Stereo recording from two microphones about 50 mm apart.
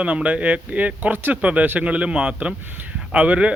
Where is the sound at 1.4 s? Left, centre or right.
Right.